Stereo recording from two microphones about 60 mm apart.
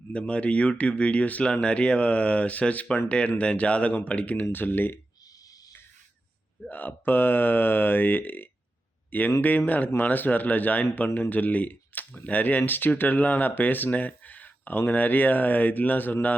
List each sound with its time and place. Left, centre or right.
0.1 s speech: left
4.5 s speech: left
6.7 s speech: left